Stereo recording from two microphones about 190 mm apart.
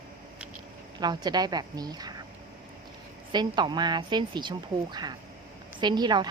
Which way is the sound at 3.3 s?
25° right (ahead or behind).